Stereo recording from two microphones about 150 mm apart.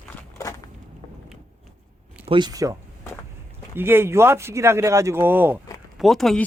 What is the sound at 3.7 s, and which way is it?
Speech, 15° right (ahead or behind).